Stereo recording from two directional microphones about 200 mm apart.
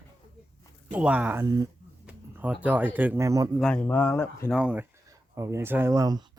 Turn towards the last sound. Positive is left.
turn(degrees=-20)  # may be behind; listen again after turning